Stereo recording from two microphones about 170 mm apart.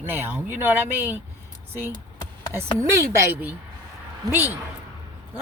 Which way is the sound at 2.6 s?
15° right (ahead or behind).